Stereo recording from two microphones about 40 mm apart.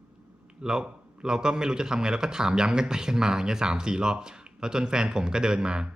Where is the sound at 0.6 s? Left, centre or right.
Centre.